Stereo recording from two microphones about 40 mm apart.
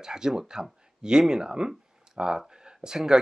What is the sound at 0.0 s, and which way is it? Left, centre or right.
Speech, centre.